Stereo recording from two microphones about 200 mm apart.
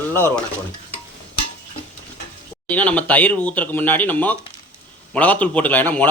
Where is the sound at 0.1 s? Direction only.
10° left (ahead or behind).